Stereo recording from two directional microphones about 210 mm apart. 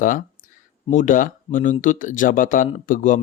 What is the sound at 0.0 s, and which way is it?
Speech, 40° left (ahead or behind).